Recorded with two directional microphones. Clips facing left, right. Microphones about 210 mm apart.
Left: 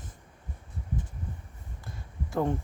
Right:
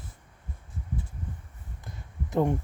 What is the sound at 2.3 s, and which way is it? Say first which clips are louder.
Heart sounds: right 3 dB; 20° right (ahead or behind).